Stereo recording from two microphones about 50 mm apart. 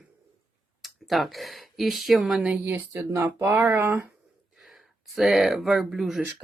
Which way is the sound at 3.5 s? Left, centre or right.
Right.